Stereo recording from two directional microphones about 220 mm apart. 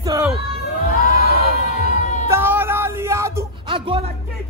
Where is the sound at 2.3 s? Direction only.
10° right (ahead or behind).